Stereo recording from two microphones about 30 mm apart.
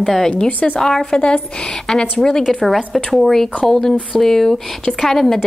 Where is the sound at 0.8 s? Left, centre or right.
Centre.